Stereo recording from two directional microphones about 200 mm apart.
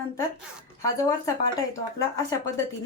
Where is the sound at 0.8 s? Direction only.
15° left (ahead or behind).